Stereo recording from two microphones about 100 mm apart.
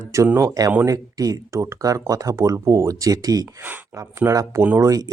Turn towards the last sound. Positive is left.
turn(degrees=-35)  # may be behind; listen again after turning